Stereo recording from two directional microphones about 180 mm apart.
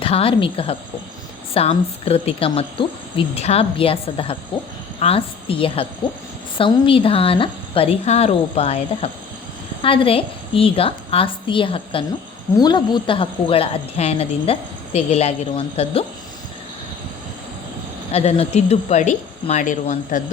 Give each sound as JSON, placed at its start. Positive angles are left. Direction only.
{"t": 0.0, "sound": "a woman's voice", "side_deg": 30}
{"t": 18.1, "sound": "a woman's voice", "side_deg": 35}